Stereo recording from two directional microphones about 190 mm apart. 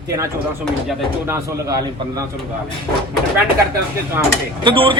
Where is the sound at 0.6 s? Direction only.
Centre (ahead or behind).